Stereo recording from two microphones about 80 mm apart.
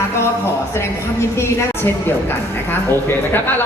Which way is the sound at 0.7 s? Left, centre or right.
Left.